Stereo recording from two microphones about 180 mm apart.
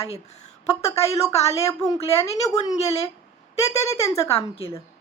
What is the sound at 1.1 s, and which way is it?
A woman's voice, 35° left (ahead or behind).